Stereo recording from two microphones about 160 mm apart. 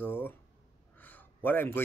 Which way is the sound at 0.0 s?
15° left (ahead or behind).